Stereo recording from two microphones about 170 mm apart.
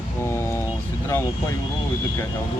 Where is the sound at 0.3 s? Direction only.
15° left (ahead or behind).